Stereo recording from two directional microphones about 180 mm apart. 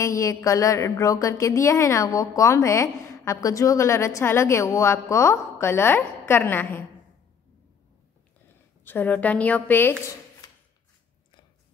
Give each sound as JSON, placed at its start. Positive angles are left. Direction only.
{"t": 0.0, "sound": "a woman's voice", "side_deg": 15}
{"t": 8.8, "sound": "a woman's voice", "side_deg": 10}